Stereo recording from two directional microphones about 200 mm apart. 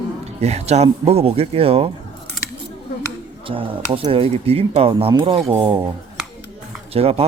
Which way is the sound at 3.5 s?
25° right (ahead or behind).